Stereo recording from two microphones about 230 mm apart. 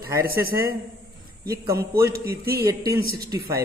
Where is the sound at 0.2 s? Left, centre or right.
Right.